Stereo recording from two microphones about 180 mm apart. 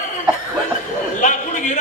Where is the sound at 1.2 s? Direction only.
45° left (ahead or behind).